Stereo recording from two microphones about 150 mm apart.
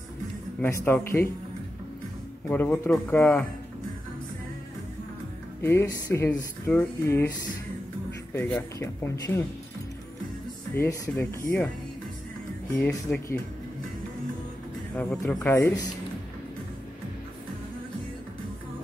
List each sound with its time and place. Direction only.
0.6 s speech: 15° left (ahead or behind)
2.5 s speech: 10° left (ahead or behind)
5.6 s speech: 15° left (ahead or behind)
8.4 s speech: 15° left (ahead or behind)
10.7 s speech: 15° left (ahead or behind)
12.7 s speech: 10° left (ahead or behind)
15.0 s speech: 10° left (ahead or behind)